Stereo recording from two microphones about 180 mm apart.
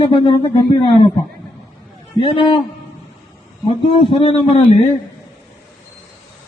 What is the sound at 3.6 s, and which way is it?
A man's voice, 30° left (ahead or behind).